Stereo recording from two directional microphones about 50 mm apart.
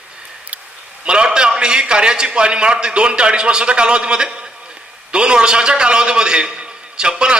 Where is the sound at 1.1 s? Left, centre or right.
Centre.